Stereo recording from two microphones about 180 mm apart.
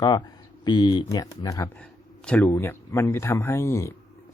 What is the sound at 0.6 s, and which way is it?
Speech, 25° left (ahead or behind).